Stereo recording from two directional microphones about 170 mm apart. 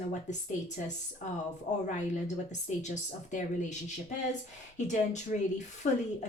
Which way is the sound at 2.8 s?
45° left (ahead or behind).